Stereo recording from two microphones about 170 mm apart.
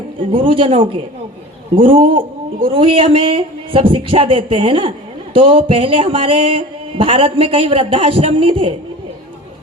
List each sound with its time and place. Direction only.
0.3 s speech: 30° right (ahead or behind)